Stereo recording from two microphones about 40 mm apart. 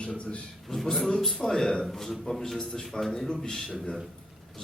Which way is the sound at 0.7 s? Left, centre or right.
Centre.